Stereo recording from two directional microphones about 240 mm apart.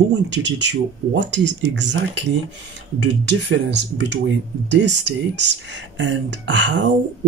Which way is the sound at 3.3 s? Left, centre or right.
Right.